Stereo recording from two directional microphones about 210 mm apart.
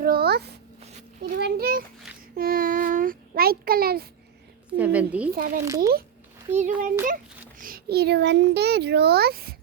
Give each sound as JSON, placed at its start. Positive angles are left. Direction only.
{"t": 0.0, "sound": "a sound", "side_deg": -45}
{"t": 1.4, "sound": "a child's voice", "side_deg": -50}
{"t": 2.3, "sound": "child singing", "side_deg": -45}
{"t": 4.8, "sound": "a woman's voice", "side_deg": -5}
{"t": 5.3, "sound": "a child's voice", "side_deg": -45}
{"t": 5.6, "sound": "a woman's voice", "side_deg": -15}
{"t": 6.5, "sound": "a child's voice", "side_deg": -35}
{"t": 7.6, "sound": "a child's voice", "side_deg": -45}